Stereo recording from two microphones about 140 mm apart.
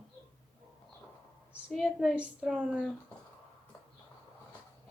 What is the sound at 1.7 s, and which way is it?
A woman's voice, centre (ahead or behind).